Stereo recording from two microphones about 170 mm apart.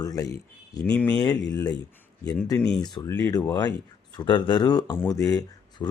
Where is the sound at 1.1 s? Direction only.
20° left (ahead or behind).